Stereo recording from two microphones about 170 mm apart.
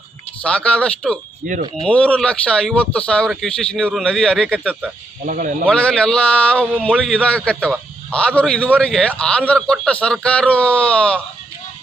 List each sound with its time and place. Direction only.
0.4 s a man's voice: 5° left (ahead or behind)
5.2 s speech: 55° right (ahead or behind)
5.6 s a man's voice: 5° left (ahead or behind)